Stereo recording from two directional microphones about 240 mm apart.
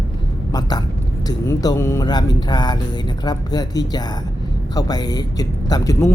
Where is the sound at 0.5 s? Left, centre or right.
Centre.